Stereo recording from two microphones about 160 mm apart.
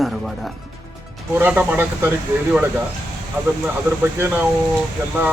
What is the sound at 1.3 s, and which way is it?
Speech, 10° right (ahead or behind).